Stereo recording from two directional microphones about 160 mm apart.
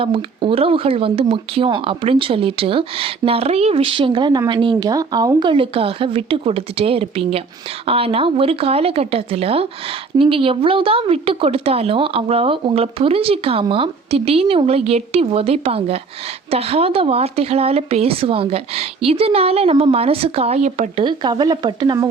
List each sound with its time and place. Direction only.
0.0 s speech: 35° right (ahead or behind)
21.0 s speech: 30° right (ahead or behind)